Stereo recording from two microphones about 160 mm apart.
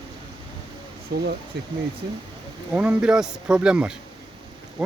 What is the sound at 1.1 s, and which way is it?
Speech, 80° right.